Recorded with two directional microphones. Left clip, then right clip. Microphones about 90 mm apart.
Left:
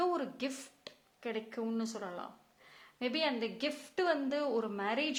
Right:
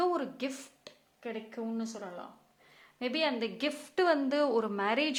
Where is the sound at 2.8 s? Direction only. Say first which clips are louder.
Right 2 dB; 5° right (ahead or behind).